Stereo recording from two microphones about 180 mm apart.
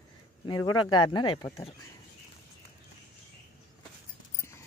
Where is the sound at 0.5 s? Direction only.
25° left (ahead or behind).